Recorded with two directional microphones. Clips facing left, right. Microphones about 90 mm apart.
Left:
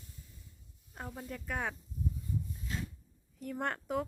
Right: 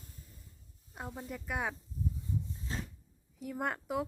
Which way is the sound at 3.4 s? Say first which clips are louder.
Even; 5° right (ahead or behind).